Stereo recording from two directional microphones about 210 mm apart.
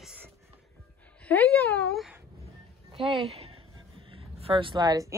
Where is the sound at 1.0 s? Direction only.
5° left (ahead or behind).